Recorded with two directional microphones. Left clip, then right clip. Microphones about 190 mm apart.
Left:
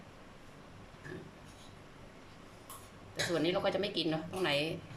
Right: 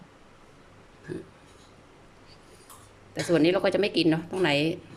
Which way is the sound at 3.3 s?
45° right (ahead or behind).